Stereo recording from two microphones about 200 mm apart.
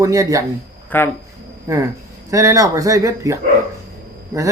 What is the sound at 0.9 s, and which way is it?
Speech, 10° left (ahead or behind).